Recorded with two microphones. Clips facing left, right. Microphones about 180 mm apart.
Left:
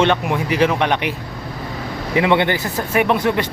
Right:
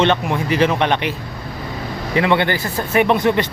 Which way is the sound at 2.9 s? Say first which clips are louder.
Right 2 dB; 5° left (ahead or behind).